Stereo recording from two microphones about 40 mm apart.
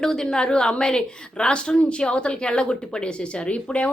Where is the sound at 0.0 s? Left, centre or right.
Centre.